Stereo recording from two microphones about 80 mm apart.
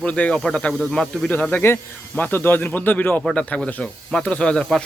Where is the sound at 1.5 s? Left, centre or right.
Left.